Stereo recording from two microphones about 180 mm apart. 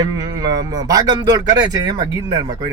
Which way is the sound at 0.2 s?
20° right (ahead or behind).